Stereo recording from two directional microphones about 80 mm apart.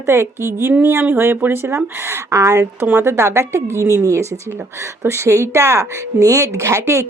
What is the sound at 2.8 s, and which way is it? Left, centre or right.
Speech, right.